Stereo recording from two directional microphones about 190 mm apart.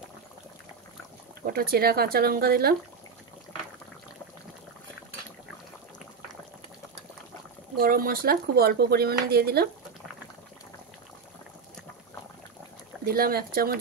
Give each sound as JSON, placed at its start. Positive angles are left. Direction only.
{"t": 1.4, "sound": "speech", "side_deg": -50}
{"t": 7.8, "sound": "speech", "side_deg": -50}
{"t": 13.0, "sound": "speech", "side_deg": -50}